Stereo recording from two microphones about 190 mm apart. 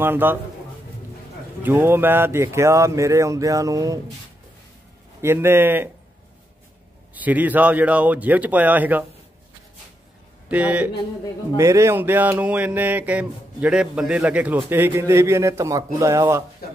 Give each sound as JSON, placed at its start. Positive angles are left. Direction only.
{"t": 0.0, "sound": "speech", "side_deg": -10}
{"t": 1.6, "sound": "speech", "side_deg": -10}
{"t": 5.2, "sound": "speech", "side_deg": -10}
{"t": 7.2, "sound": "speech", "side_deg": -10}
{"t": 10.5, "sound": "speech", "side_deg": -5}